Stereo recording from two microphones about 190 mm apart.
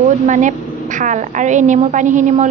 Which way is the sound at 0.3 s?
40° right (ahead or behind).